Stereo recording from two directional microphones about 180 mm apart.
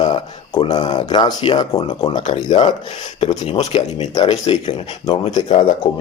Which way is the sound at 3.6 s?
40° left (ahead or behind).